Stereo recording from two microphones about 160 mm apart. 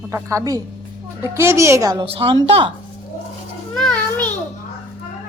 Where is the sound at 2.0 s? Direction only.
35° right (ahead or behind).